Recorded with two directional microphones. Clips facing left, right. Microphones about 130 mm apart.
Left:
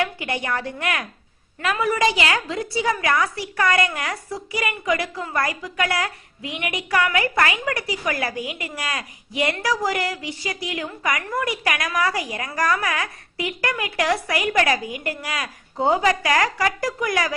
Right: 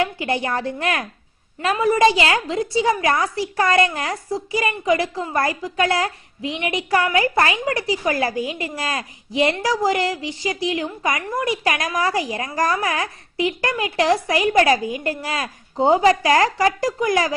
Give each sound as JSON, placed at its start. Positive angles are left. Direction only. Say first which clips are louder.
{"t": 0.0, "sound": "a woman's voice", "louder": "right 3 dB", "side_deg": -30}